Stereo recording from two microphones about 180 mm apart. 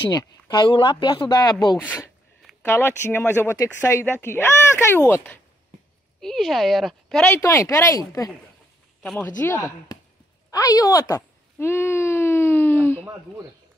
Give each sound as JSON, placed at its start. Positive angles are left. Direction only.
{"t": 0.1, "sound": "speech", "side_deg": 20}
{"t": 1.8, "sound": "speech", "side_deg": 10}
{"t": 6.2, "sound": "a woman's voice", "side_deg": 0}
{"t": 7.4, "sound": "speech", "side_deg": 15}
{"t": 9.0, "sound": "speech", "side_deg": 0}
{"t": 9.9, "sound": "a sound", "side_deg": 20}
{"t": 10.5, "sound": "speech", "side_deg": 20}
{"t": 11.6, "sound": "a sound", "side_deg": 15}